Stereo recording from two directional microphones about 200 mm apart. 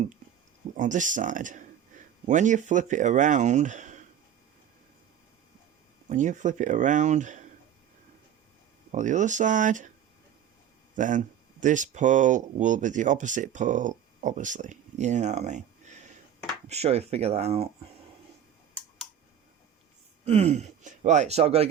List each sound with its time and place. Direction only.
0.8 s speech: 40° right (ahead or behind)
6.1 s speech: 40° right (ahead or behind)
8.9 s speech: 40° right (ahead or behind)
10.9 s speech: 40° right (ahead or behind)
20.2 s speech: 30° right (ahead or behind)